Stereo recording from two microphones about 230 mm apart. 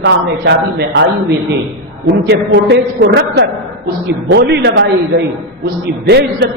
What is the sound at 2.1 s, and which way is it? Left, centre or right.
A woman's voice, right.